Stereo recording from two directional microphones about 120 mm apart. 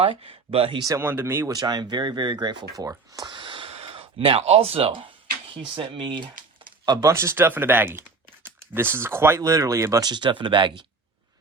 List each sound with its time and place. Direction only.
0.0 s speech: 55° right (ahead or behind)
0.9 s speech: 20° right (ahead or behind)
1.5 s speech: 35° right (ahead or behind)
3.2 s a sound: 45° right (ahead or behind)
5.5 s speech: 45° right (ahead or behind)
6.7 s a sound: 35° right (ahead or behind)
7.1 s speech: 20° right (ahead or behind)
10.1 s speech: 40° right (ahead or behind)